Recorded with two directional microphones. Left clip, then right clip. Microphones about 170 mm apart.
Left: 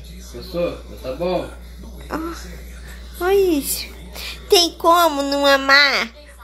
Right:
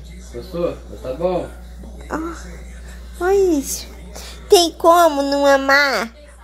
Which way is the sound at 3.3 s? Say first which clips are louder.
Right 1 dB; 15° right (ahead or behind).